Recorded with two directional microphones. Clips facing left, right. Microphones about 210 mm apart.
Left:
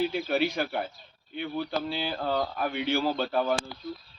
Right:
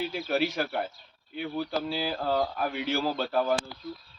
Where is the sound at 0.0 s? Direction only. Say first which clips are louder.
Left 2 dB; centre (ahead or behind).